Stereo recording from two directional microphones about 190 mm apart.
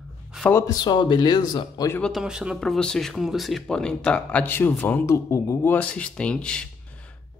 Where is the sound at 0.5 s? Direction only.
15° left (ahead or behind).